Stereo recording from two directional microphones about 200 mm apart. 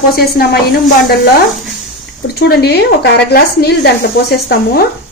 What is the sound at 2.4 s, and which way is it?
Speech, 55° left (ahead or behind).